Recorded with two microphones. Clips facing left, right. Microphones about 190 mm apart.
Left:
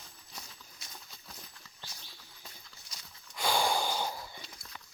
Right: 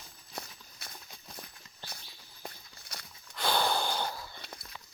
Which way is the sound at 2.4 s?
60° right (ahead or behind).